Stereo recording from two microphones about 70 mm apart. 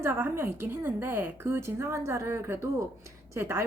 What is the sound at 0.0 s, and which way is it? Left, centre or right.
A woman's voice, right.